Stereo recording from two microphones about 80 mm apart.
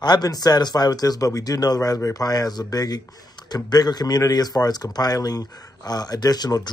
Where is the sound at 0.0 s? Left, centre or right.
Left.